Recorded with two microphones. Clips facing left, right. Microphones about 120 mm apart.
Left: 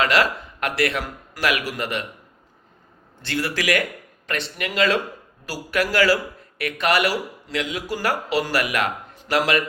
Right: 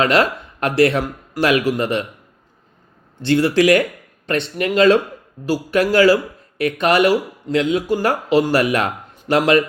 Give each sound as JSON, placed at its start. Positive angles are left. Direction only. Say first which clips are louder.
{"t": 0.0, "sound": "speech", "louder": "right 4 dB", "side_deg": -25}
{"t": 3.2, "sound": "speech", "louder": "right 11 dB", "side_deg": -25}